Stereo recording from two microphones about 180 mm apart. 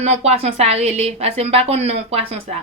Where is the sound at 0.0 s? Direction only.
35° right (ahead or behind).